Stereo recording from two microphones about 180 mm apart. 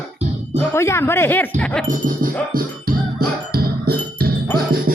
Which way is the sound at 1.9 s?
45° right (ahead or behind).